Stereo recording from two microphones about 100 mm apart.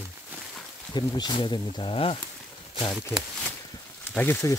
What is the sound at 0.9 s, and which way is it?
Speech, 45° left (ahead or behind).